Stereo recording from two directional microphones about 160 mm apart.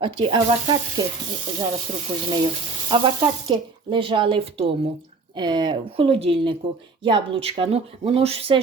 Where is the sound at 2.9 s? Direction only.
30° right (ahead or behind).